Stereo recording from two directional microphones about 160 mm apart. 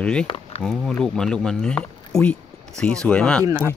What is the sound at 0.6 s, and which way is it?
Speech, centre (ahead or behind).